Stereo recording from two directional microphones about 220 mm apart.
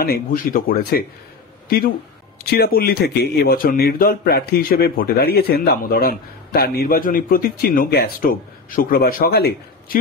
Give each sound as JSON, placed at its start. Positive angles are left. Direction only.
{"t": 0.0, "sound": "speech", "side_deg": 40}
{"t": 2.4, "sound": "a man's voice", "side_deg": 45}